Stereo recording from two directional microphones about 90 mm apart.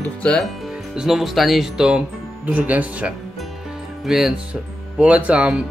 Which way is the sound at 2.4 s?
15° right (ahead or behind).